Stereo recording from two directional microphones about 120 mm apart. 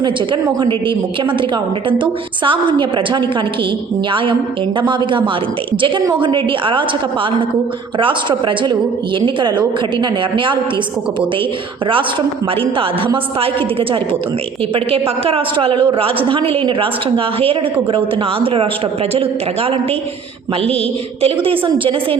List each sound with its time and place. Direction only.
0.0 s a man's voice: 40° right (ahead or behind)
7.9 s a man's voice: 45° right (ahead or behind)
12.7 s a man's voice: 50° right (ahead or behind)
15.2 s a man's voice: 50° right (ahead or behind)
21.2 s a man's voice: 50° right (ahead or behind)